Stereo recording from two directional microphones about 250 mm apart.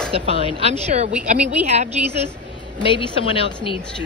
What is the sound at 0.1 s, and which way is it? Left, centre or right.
A woman's voice, right.